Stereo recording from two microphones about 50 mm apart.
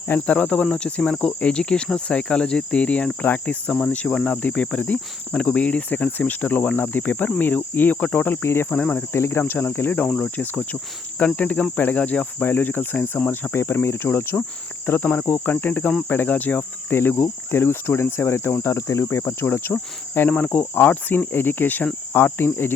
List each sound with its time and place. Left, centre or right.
0.3 s cricket: left
8.4 s cricket: left
10.1 s cricket: centre
10.3 s cricket: left
11.3 s cricket: left
13.3 s cricket: left
13.8 s speech: left
14.8 s cricket: left
16.9 s cricket: left
17.2 s speech: left
18.6 s cricket: left
19.1 s speech: left
20.3 s cricket: left